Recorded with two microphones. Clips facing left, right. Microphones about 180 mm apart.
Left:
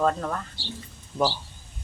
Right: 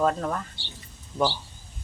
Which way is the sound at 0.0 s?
5° right (ahead or behind).